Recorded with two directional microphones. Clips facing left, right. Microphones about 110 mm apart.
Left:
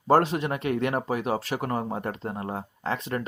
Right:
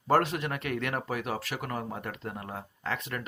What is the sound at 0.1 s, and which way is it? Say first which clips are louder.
Speech: left 5 dB; 25° left (ahead or behind).